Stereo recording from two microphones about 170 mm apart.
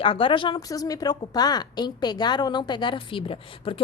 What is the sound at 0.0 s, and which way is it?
A woman's voice, 30° left (ahead or behind).